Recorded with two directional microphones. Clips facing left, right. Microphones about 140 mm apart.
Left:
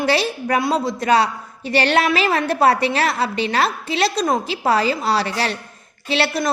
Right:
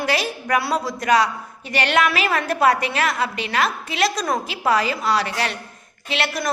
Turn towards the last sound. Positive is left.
turn(degrees=30)  # may be behind; listen again after turning